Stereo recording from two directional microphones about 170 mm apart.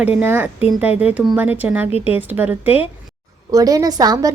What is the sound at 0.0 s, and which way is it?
Speech, 10° right (ahead or behind).